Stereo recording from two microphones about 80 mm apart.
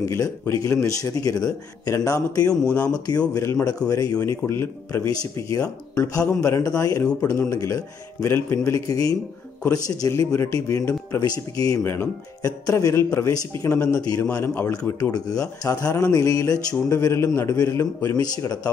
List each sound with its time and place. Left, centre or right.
0.0 s a man's voice: left
2.7 s speech: centre
3.3 s a man's voice: left
4.3 s a man's voice: left
6.2 s a man's voice: left
11.8 s a man's voice: left
12.4 s a man's voice: left
14.2 s a man's voice: left
14.8 s a man's voice: left